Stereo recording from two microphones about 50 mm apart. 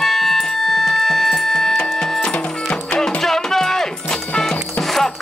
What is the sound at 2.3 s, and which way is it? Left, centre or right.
Music, left.